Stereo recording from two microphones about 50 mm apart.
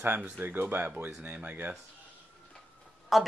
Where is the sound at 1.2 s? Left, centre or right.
Right.